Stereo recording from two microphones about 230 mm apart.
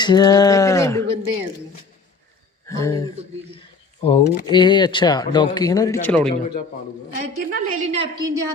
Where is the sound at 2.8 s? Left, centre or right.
Centre.